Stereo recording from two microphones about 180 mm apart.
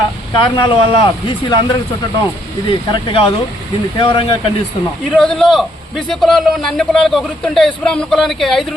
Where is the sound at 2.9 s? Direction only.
30° left (ahead or behind).